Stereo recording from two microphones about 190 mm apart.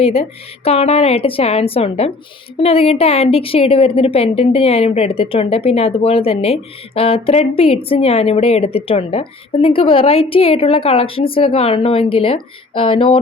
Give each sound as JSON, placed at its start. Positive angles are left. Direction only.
{"t": 0.0, "sound": "a woman's voice", "side_deg": 30}